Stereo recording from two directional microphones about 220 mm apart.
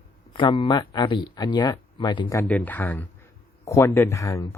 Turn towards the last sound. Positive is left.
turn(degrees=15)  # may be behind; listen again after turning